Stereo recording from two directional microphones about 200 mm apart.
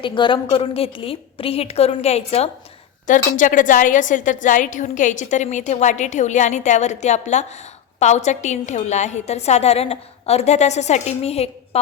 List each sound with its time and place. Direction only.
0.0 s a woman's voice: 25° left (ahead or behind)